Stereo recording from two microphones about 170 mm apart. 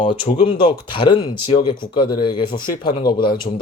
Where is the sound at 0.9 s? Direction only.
30° left (ahead or behind).